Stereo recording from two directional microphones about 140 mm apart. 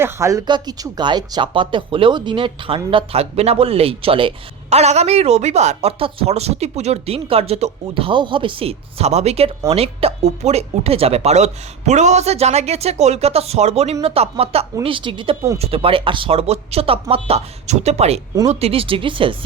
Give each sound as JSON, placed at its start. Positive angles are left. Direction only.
{"t": 0.0, "sound": "speech", "side_deg": -20}